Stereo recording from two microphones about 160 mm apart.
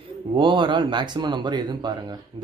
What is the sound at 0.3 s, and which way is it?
Speech, 30° right (ahead or behind).